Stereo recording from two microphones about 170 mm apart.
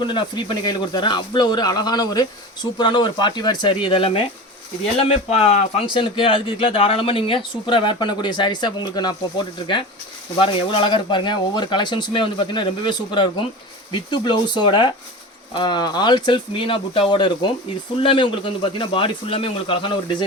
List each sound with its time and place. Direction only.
0.0 s a man's voice: 30° left (ahead or behind)
10.3 s a man's voice: 30° left (ahead or behind)